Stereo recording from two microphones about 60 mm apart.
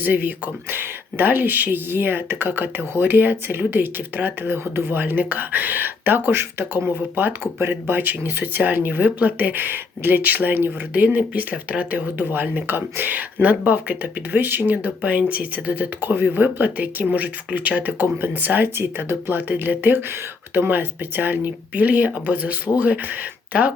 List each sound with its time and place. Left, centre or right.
0.0 s speech: right